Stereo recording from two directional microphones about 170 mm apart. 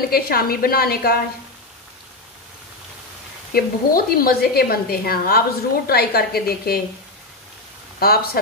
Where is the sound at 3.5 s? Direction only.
60° left (ahead or behind).